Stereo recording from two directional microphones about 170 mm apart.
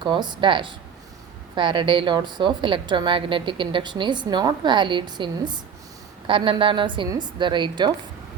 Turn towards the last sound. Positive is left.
turn(degrees=-25)  # may be behind; listen again after turning